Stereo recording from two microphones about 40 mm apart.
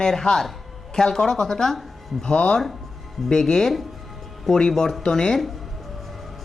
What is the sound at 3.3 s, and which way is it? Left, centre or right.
Speech, centre.